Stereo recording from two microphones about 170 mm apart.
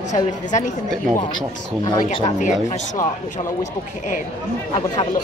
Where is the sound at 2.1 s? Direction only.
40° left (ahead or behind).